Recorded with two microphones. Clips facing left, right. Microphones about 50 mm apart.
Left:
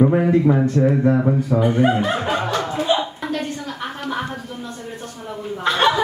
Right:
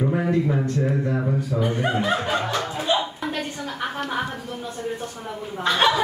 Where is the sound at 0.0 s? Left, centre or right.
Left.